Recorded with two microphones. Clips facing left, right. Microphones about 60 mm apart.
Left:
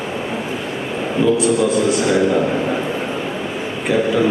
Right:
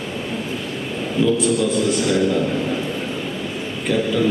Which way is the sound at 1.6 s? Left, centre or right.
Centre.